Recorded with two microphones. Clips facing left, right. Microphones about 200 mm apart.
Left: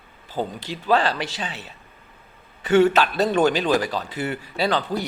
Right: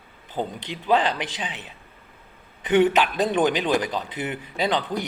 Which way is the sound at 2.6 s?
15° right (ahead or behind).